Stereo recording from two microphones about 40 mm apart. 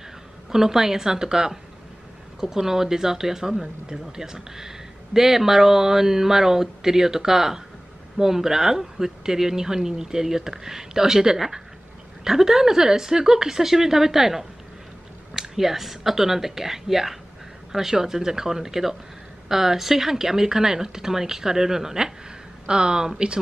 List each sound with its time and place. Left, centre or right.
0.5 s speech: centre